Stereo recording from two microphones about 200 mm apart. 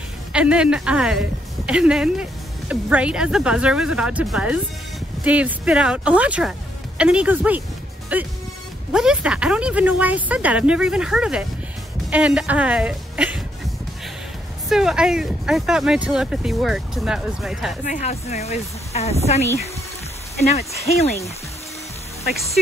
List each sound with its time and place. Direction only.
0.3 s speech: 5° right (ahead or behind)
14.7 s speech: 5° right (ahead or behind)
17.8 s speech: 35° left (ahead or behind)